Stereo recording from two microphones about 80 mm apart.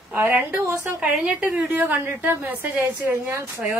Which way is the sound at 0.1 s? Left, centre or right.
Right.